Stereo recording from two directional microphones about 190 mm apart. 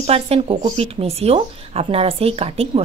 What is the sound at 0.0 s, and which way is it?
Speech, 30° right (ahead or behind).